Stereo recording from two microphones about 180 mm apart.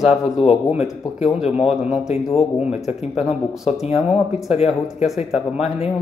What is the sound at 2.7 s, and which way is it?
Speech, 35° left (ahead or behind).